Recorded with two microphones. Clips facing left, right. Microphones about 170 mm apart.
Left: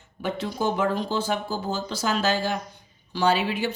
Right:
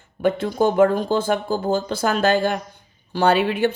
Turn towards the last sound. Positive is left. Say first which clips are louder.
# right 5 dB
turn(degrees=-55)  # may be behind; listen again after turning